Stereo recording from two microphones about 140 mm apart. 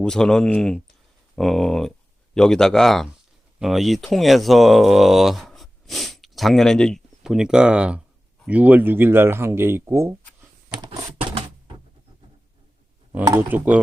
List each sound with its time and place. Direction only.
0.0 s speech: 5° left (ahead or behind); by 10.1 s 20° right (ahead or behind)
10.8 s typing: 40° right (ahead or behind)
13.2 s speech: 15° right (ahead or behind)